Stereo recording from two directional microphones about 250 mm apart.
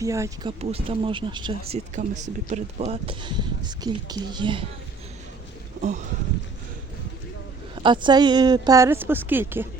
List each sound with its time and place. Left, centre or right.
0.0 s a woman's voice: centre
7.8 s a woman's voice: centre